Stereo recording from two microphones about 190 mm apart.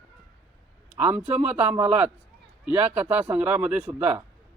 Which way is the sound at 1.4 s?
10° right (ahead or behind).